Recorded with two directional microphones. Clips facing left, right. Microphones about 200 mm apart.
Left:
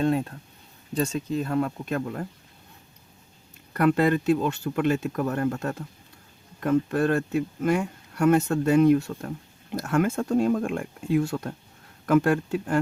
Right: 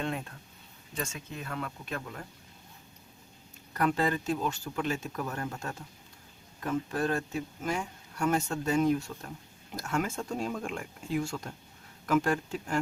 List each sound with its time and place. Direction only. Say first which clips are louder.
0.0 s speech: left 11 dB; 35° left (ahead or behind)
3.9 s speech: left 8 dB; 60° left (ahead or behind)